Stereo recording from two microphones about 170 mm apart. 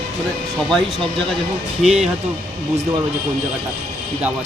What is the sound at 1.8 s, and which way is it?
Speech, 5° right (ahead or behind).